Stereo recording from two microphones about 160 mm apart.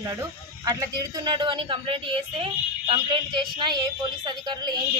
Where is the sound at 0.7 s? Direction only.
20° right (ahead or behind).